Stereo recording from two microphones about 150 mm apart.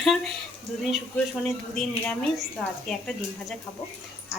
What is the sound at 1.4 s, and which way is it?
Speech, 10° left (ahead or behind).